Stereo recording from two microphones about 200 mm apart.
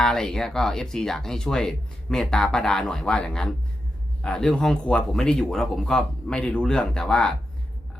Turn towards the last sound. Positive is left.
turn(degrees=5)  # may be behind; listen again after turning